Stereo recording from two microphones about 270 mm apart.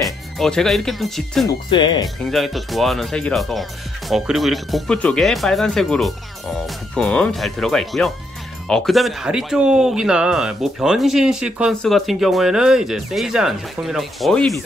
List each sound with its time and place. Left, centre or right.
0.0 s speech: centre
1.7 s speech: centre
2.2 s speech: centre